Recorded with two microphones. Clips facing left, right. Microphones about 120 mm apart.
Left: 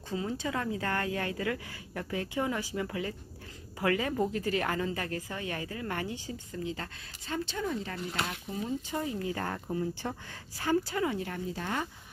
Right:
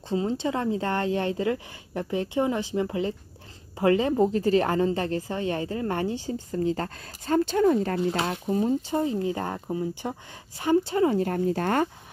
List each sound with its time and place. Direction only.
0.1 s a woman's voice: 25° right (ahead or behind); by 11.9 s 55° right (ahead or behind)